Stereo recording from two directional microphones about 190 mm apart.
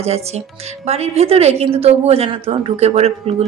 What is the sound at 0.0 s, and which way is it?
A woman's voice, 35° right (ahead or behind).